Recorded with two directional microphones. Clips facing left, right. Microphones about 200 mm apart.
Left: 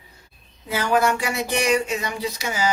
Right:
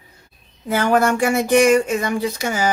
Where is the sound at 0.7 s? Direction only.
50° right (ahead or behind).